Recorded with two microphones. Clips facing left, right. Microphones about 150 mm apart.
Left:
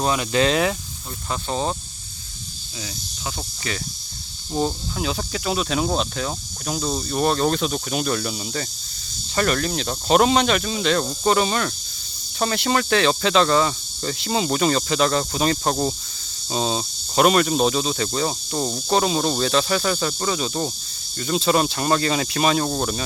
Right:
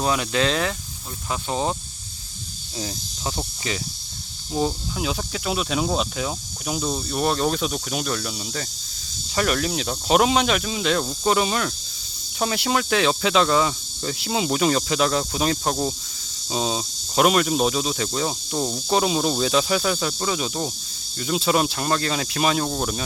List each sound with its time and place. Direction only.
0.0 s speech: centre (ahead or behind)
1.3 s speech: 10° right (ahead or behind)
2.7 s speech: 40° right (ahead or behind)
4.5 s speech: 5° right (ahead or behind)